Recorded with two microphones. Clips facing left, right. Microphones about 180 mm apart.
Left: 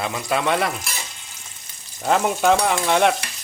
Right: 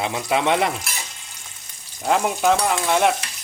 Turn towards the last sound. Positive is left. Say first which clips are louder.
# left 1 dB
turn(degrees=0)  # may be behind; listen again after turning